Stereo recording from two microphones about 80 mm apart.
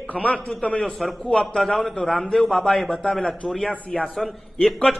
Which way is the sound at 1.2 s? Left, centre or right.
Centre.